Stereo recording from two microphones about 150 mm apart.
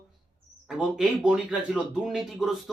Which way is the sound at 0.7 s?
5° right (ahead or behind).